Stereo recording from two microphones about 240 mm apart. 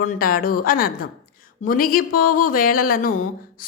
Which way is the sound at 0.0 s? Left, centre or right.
Left.